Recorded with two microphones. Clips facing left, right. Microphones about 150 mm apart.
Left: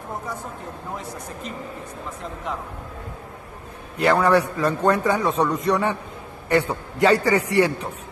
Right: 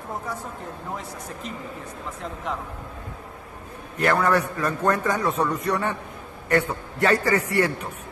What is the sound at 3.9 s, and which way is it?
A man's voice, 10° left (ahead or behind).